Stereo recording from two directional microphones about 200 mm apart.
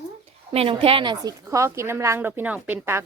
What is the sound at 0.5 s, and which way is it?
A woman's voice, 30° right (ahead or behind).